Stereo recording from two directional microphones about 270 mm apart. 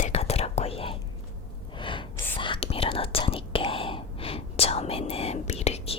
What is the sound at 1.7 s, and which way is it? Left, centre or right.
Gasp, centre.